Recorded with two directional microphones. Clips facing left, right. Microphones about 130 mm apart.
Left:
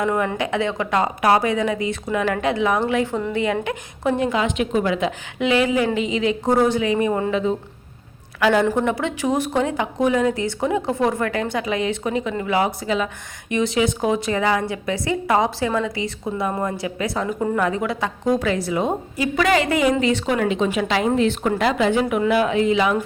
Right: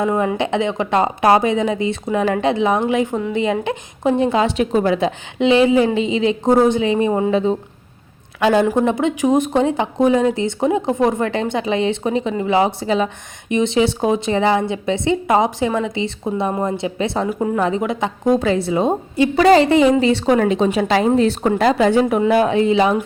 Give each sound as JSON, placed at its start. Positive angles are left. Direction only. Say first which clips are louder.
{"t": 0.0, "sound": "speech", "louder": "right 3 dB", "side_deg": -25}
{"t": 3.3, "sound": "speech", "louder": "right 4 dB", "side_deg": -20}
{"t": 7.3, "sound": "a woman's voice", "louder": "right 4 dB", "side_deg": -30}
{"t": 17.2, "sound": "a woman's voice", "louder": "right 2 dB", "side_deg": -10}
{"t": 17.6, "sound": "a woman's voice", "louder": "right 3 dB", "side_deg": -20}